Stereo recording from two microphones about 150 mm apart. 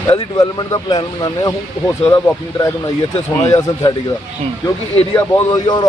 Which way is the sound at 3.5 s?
20° left (ahead or behind).